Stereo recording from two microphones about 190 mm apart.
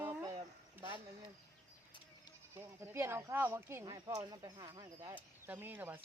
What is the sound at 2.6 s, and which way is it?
Speech, 15° right (ahead or behind).